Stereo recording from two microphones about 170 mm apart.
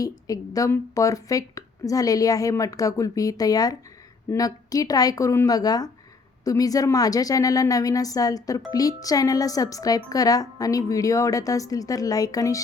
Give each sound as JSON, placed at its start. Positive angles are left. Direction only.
{"t": 0.0, "sound": "a woman's voice", "side_deg": 20}